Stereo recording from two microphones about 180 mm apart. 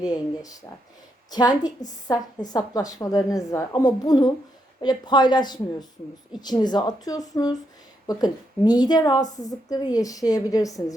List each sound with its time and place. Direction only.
0.0 s a woman's voice: 20° left (ahead or behind)